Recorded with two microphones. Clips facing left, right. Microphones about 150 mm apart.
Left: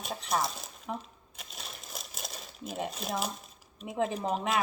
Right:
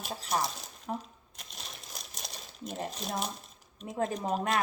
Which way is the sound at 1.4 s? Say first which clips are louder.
Left 2 dB; centre (ahead or behind).